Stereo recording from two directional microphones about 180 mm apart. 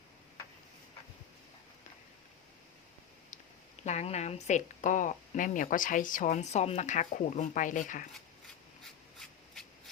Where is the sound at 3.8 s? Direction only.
40° left (ahead or behind).